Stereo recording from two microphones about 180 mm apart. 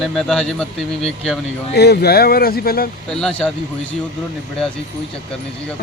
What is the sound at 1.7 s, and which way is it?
Speech, 65° left (ahead or behind).